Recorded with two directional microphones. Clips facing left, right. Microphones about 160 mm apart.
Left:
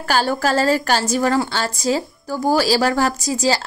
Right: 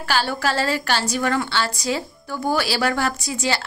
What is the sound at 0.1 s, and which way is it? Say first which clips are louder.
A woman's voice: left 4 dB; 45° left (ahead or behind).